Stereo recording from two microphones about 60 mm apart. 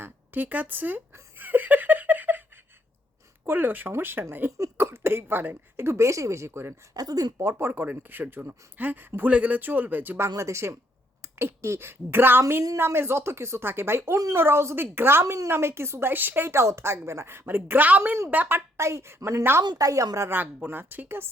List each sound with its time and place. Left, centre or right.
0.0 s speech: right
1.4 s giggle: right
3.4 s speech: right
4.5 s a woman's voice: right
5.7 s a woman's voice: right
6.9 s speech: right
7.3 s a woman's voice: right
7.7 s speech: right
10.2 s a woman's voice: right
15.2 s a woman's voice: right
18.8 s a woman's voice: right
19.8 s speech: right
20.3 s speech: right